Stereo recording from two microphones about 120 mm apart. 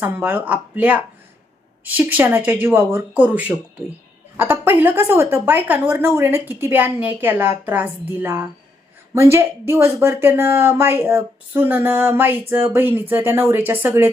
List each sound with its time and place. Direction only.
0.0 s speech: 15° right (ahead or behind)